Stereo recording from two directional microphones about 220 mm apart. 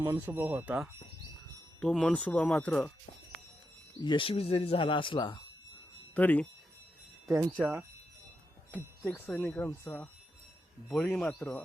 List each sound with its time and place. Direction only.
0.0 s speech: 10° right (ahead or behind); by 2.9 s 5° left (ahead or behind)
4.0 s speech: 20° left (ahead or behind)
6.1 s speech: 5° left (ahead or behind)
7.3 s speech: 15° right (ahead or behind)
8.7 s speech: 5° left (ahead or behind)